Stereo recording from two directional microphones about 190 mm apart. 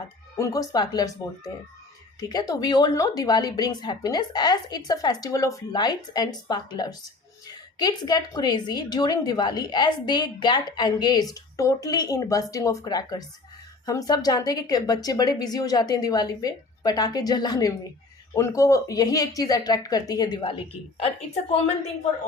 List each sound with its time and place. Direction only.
0.3 s a woman's voice: 15° left (ahead or behind)
2.3 s a woman's voice: 20° left (ahead or behind)